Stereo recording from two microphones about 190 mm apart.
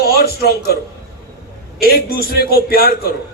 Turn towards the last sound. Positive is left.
turn(degrees=55)  # may be behind; listen again after turning